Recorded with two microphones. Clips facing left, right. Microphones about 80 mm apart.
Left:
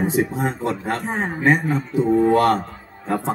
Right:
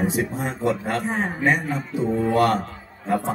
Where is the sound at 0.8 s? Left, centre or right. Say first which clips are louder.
Left 1 dB; left.